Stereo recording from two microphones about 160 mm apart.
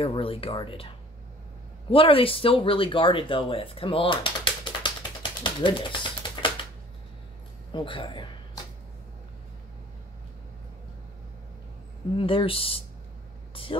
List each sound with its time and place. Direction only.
0.0 s speech: 35° left (ahead or behind)
5.4 s typewriter: 30° left (ahead or behind)
7.7 s speech: 30° left (ahead or behind)
12.2 s speech: 35° left (ahead or behind)